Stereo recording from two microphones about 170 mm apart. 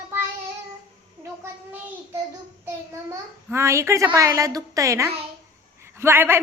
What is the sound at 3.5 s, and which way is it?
A woman's voice, 15° right (ahead or behind).